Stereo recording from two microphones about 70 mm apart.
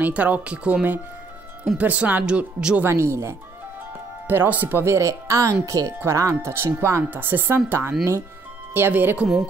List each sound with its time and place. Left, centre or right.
0.0 s speech: right
1.8 s speech: right
2.8 s speech: right
4.3 s speech: right
4.9 s speech: right